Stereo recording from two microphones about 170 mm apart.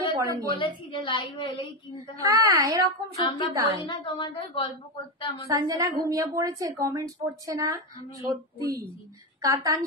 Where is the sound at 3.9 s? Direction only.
30° left (ahead or behind).